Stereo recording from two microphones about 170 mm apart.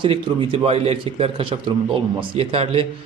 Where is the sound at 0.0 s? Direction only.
35° right (ahead or behind).